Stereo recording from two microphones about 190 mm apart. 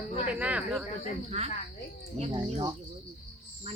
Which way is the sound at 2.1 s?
25° right (ahead or behind).